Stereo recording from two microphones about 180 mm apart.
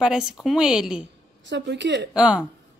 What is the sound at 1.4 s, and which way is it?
Speech, 75° right (ahead or behind).